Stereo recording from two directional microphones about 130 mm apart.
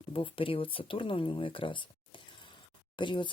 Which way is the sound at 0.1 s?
45° left (ahead or behind).